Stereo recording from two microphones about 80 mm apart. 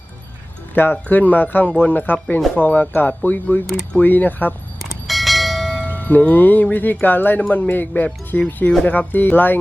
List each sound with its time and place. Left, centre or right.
0.7 s music: left
4.8 s bell: centre
5.7 s music: left